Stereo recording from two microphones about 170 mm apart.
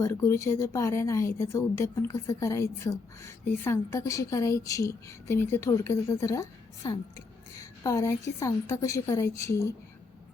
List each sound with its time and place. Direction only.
0.0 s a woman's voice: 15° left (ahead or behind)
7.9 s a woman's voice: 20° left (ahead or behind)